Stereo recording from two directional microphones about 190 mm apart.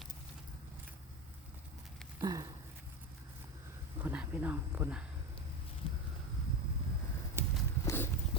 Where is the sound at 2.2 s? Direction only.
20° right (ahead or behind).